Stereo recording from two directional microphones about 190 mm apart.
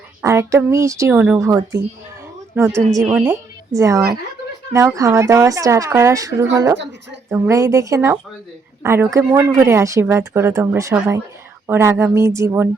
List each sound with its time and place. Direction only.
0.2 s a woman's voice: 15° right (ahead or behind)
3.7 s speech: 15° right (ahead or behind)